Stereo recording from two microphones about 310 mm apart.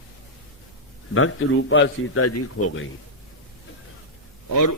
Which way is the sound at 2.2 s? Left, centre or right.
Left.